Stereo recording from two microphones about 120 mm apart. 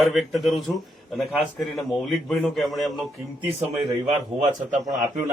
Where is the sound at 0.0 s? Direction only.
Centre (ahead or behind).